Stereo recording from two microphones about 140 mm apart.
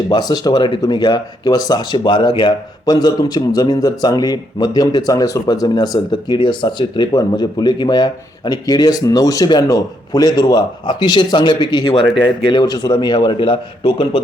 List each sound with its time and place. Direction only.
0.1 s a man's voice: 30° left (ahead or behind)